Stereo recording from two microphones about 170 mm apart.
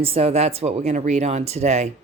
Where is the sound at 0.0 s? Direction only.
35° right (ahead or behind).